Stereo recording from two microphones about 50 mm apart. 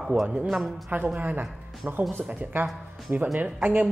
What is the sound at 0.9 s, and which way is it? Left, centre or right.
Speech, right.